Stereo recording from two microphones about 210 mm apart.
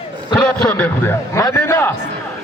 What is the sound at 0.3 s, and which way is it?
A man's voice, 5° left (ahead or behind).